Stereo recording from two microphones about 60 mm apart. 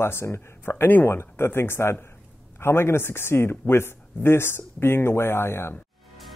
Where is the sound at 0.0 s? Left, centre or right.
Left.